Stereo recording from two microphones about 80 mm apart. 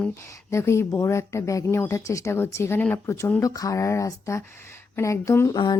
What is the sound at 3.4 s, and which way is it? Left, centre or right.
A woman's voice, left.